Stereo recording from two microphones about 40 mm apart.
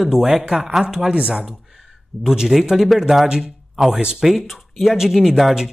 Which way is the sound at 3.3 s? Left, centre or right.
Centre.